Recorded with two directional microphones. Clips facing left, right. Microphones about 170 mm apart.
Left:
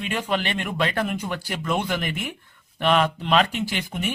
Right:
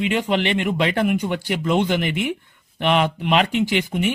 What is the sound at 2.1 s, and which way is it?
Speech, 75° right (ahead or behind).